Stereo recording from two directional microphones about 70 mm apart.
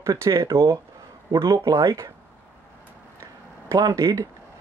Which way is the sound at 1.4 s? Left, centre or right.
Right.